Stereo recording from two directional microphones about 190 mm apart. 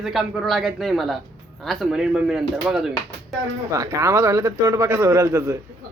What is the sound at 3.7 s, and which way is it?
A man's voice, 15° right (ahead or behind).